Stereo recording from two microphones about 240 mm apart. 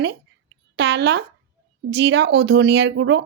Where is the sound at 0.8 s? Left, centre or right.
Right.